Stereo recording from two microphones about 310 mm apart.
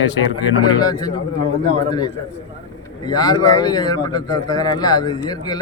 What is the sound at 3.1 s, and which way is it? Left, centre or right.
Speech, centre.